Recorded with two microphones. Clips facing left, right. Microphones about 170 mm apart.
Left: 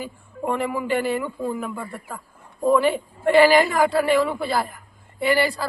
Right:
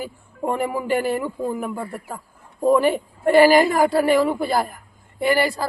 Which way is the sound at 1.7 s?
35° right (ahead or behind).